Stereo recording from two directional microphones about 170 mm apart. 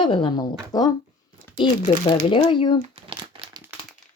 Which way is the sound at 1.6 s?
35° left (ahead or behind).